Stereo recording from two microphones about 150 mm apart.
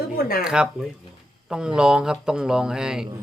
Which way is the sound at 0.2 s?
75° left (ahead or behind).